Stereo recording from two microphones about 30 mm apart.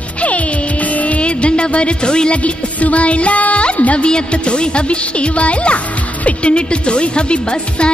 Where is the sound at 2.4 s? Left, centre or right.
Left.